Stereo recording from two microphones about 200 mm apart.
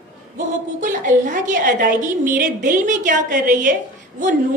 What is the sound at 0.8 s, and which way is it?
A woman's voice, 40° right (ahead or behind).